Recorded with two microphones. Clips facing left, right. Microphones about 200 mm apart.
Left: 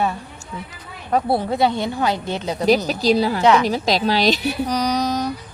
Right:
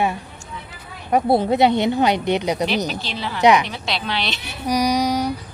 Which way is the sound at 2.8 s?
40° left (ahead or behind).